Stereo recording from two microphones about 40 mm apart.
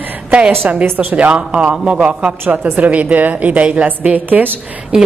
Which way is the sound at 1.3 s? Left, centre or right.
Right.